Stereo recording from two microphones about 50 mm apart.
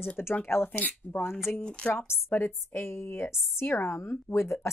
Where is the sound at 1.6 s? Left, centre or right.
Left.